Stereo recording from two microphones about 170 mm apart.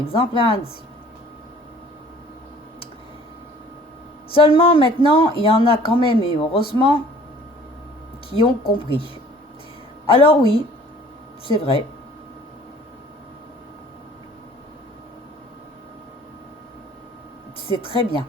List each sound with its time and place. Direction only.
0.1 s speech: 35° left (ahead or behind)
4.3 s speech: 30° left (ahead or behind)
8.3 s speech: 30° left (ahead or behind)
10.1 s speech: 35° left (ahead or behind)
17.7 s speech: 35° left (ahead or behind)